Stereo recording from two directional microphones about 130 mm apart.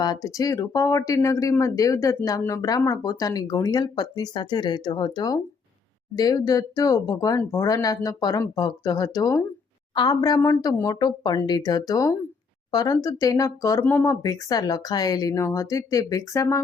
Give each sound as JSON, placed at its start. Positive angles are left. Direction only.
{"t": 0.0, "sound": "speech", "side_deg": 30}
{"t": 13.8, "sound": "speech", "side_deg": 15}
{"t": 14.1, "sound": "speech", "side_deg": 30}